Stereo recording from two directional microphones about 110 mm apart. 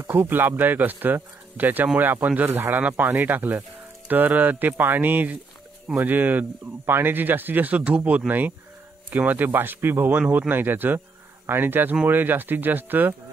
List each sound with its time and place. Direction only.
0.0 s speech: 20° right (ahead or behind)